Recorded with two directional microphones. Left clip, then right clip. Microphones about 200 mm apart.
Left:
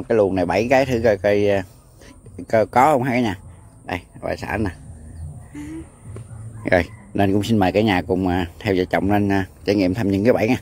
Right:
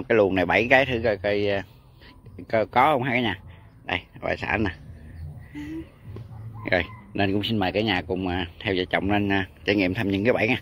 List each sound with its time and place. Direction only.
0.1 s speech: 5° left (ahead or behind)
3.8 s speech: 10° left (ahead or behind)
6.6 s speech: 25° left (ahead or behind)